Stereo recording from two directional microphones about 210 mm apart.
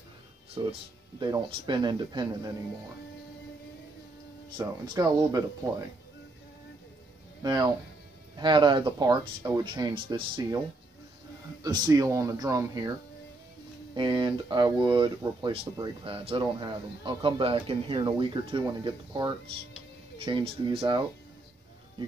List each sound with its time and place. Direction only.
0.6 s speech: 25° right (ahead or behind)
4.6 s speech: 20° right (ahead or behind)
7.4 s speech: 20° right (ahead or behind)
11.6 s speech: 20° right (ahead or behind)
13.9 s speech: 20° right (ahead or behind)